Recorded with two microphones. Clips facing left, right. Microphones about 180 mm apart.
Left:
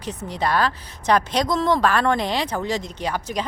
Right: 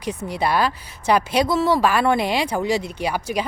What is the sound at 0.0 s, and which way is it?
Speech, 10° right (ahead or behind).